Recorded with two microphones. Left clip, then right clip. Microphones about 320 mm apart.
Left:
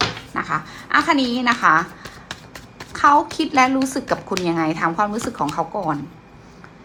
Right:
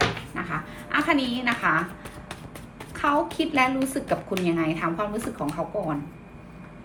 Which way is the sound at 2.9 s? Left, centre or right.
Centre.